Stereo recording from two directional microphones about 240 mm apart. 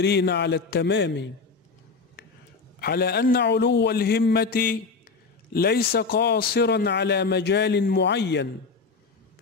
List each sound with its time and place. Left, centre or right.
0.0 s a man's voice: left
2.8 s a man's voice: left